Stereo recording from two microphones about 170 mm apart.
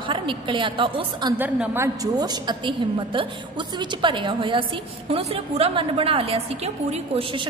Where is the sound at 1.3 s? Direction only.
10° right (ahead or behind).